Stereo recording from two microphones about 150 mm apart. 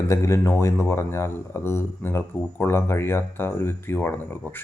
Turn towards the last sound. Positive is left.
turn(degrees=15)  # may be behind; listen again after turning